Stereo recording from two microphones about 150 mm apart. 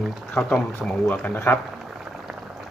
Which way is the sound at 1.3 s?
15° left (ahead or behind).